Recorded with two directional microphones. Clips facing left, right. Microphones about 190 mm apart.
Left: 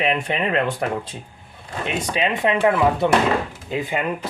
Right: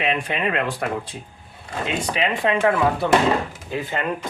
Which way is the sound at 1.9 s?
20° left (ahead or behind).